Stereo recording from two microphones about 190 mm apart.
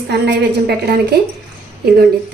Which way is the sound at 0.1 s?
60° right (ahead or behind).